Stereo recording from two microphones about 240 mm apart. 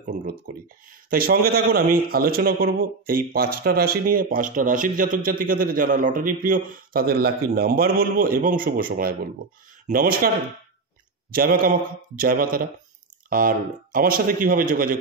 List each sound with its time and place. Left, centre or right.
0.0 s speech: right
11.3 s speech: right